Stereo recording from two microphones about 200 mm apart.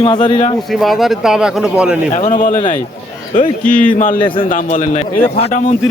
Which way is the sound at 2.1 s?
40° left (ahead or behind).